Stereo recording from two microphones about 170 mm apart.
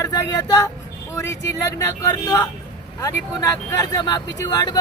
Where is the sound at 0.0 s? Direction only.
20° left (ahead or behind).